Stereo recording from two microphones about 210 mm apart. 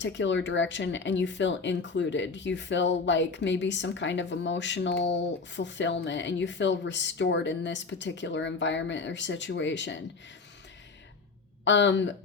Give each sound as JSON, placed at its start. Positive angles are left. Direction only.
{"t": 0.0, "sound": "speech", "side_deg": 60}
{"t": 11.6, "sound": "speech", "side_deg": 60}